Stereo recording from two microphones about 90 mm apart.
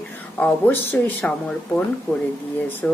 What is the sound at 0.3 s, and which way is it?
A woman's voice, 15° left (ahead or behind).